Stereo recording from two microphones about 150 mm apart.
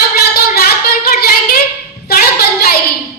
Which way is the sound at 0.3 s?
90° left.